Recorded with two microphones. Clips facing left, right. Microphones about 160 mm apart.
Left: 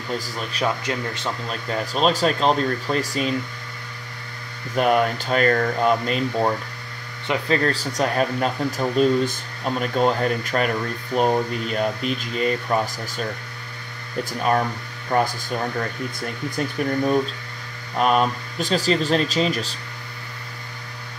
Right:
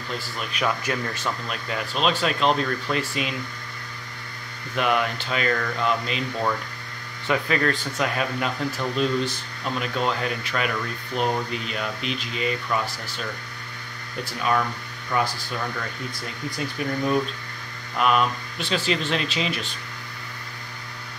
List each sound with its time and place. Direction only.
0.2 s speech: 35° left (ahead or behind)
0.7 s speech: 25° left (ahead or behind)
1.7 s speech: 40° left (ahead or behind)
4.7 s speech: 40° left (ahead or behind)
7.4 s speech: 30° left (ahead or behind)
14.4 s speech: 40° left (ahead or behind)
17.9 s speech: 40° left (ahead or behind)